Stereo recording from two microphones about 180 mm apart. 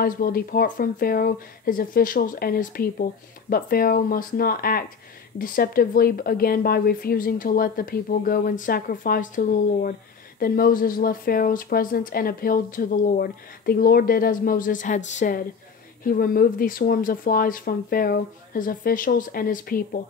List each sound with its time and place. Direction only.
0.0 s speech: 55° left (ahead or behind)